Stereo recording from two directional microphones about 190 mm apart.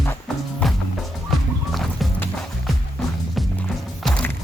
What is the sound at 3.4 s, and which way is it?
Music, centre (ahead or behind).